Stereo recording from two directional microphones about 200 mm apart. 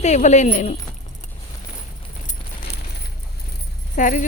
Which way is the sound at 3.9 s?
40° left (ahead or behind).